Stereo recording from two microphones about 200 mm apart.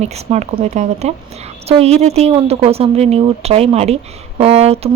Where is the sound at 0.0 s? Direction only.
35° right (ahead or behind).